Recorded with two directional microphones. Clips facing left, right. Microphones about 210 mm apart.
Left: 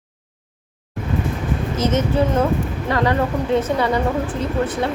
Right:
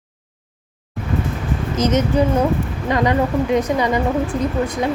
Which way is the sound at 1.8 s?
20° right (ahead or behind).